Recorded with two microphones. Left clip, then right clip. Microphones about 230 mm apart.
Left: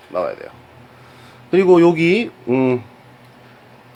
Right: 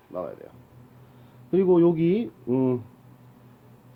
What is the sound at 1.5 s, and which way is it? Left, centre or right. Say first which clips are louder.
Speech: left 8 dB; left.